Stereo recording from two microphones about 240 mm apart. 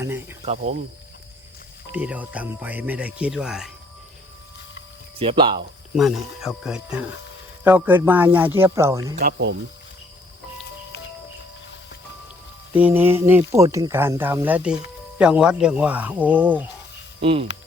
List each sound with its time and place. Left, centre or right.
0.0 s cricket: centre
1.9 s speech: centre
5.2 s speech: right
6.0 s speech: centre
9.1 s speech: right
12.7 s speech: centre
17.2 s speech: right